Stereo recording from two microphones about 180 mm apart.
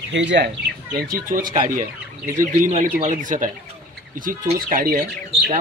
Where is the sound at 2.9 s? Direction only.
45° right (ahead or behind).